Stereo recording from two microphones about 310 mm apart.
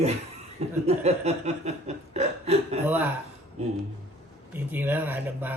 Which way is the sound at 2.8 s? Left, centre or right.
Centre.